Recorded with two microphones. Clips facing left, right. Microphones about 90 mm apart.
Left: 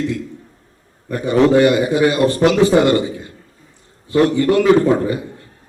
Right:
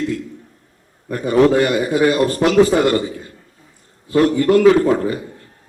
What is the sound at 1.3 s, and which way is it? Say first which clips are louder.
Speech: left 1 dB; 20° left (ahead or behind).